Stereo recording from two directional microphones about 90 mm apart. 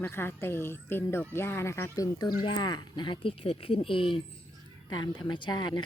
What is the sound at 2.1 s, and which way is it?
Speech, 55° left (ahead or behind).